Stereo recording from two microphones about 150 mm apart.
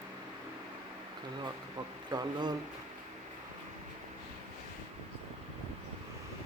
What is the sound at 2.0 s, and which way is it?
Speech, 30° right (ahead or behind).